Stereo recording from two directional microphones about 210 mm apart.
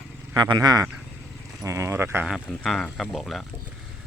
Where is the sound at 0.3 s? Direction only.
20° right (ahead or behind); by 3.4 s centre (ahead or behind).